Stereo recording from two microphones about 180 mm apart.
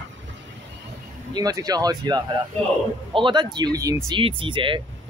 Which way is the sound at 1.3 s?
20° right (ahead or behind).